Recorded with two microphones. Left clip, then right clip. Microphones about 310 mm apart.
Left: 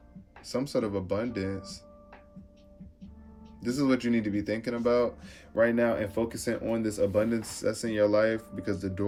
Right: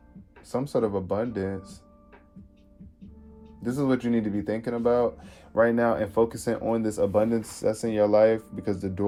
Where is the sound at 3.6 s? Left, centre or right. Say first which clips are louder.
Right 1 dB; centre.